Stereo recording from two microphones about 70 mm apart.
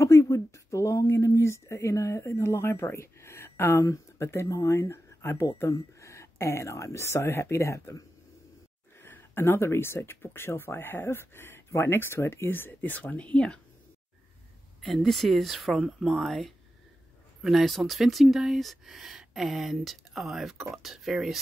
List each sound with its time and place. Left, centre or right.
0.0 s speech: left
9.0 s speech: left
13.0 s speech: centre
14.8 s speech: centre